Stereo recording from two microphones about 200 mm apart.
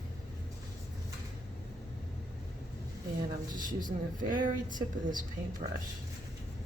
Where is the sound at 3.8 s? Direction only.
40° right (ahead or behind).